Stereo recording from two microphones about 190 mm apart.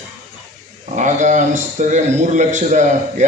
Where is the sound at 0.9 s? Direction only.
40° right (ahead or behind).